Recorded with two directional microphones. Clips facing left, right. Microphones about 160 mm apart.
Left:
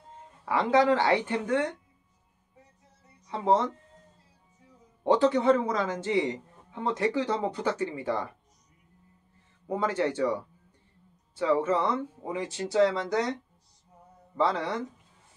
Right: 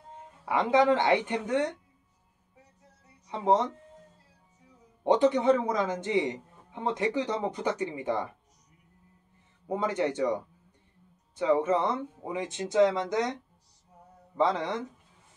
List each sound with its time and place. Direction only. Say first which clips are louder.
0.5 s a man's voice: even; 20° right (ahead or behind)
3.3 s speech: even; 20° right (ahead or behind)
5.0 s a man's voice: even; 20° right (ahead or behind)
9.7 s a man's voice: left 1 dB; 20° right (ahead or behind)